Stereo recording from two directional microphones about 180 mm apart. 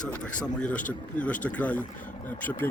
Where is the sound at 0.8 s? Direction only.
45° left (ahead or behind).